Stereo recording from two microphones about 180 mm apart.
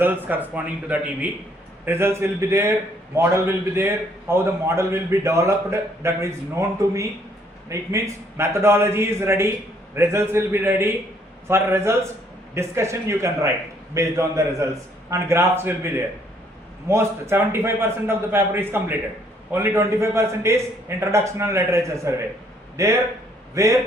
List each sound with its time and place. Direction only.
0.0 s a man's voice: 10° right (ahead or behind)
16.9 s a man's voice: 15° right (ahead or behind)